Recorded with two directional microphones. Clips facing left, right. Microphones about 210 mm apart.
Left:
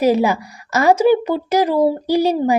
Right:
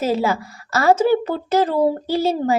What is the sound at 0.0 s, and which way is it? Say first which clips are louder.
A woman's voice: left 5 dB; 15° left (ahead or behind).